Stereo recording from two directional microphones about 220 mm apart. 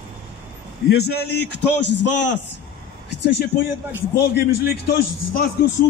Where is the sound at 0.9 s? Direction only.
45° left (ahead or behind).